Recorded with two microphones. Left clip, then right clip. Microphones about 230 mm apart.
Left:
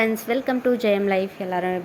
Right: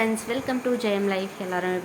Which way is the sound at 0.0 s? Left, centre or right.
Left.